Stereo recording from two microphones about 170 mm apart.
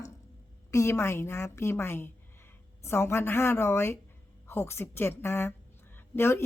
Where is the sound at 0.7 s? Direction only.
15° left (ahead or behind).